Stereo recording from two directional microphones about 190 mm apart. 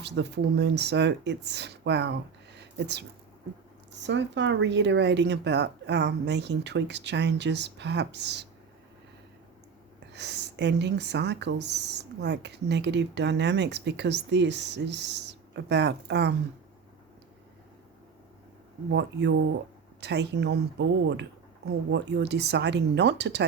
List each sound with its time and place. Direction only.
0.0 s speech: 65° right (ahead or behind)
2.6 s a sound: 65° right (ahead or behind)
4.0 s speech: 65° right (ahead or behind)
10.1 s speech: 65° right (ahead or behind)
18.9 s speech: 65° right (ahead or behind)